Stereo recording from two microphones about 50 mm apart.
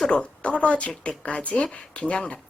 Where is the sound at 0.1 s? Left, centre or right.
Left.